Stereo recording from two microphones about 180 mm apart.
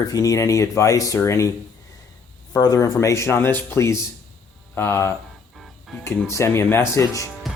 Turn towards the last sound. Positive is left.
turn(degrees=15)  # may be behind; listen again after turning